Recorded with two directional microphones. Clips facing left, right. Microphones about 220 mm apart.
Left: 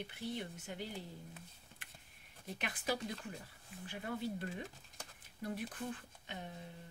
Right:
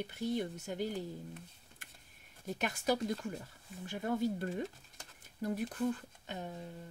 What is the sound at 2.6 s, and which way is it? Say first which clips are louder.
Speech: right 6 dB; 40° right (ahead or behind).